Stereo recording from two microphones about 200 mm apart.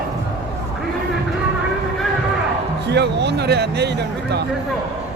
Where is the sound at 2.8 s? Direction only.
55° right (ahead or behind).